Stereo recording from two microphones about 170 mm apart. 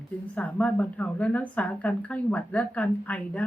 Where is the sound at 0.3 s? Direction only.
10° left (ahead or behind).